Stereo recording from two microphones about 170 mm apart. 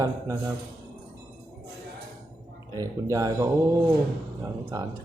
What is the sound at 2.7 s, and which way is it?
Speech, 20° right (ahead or behind).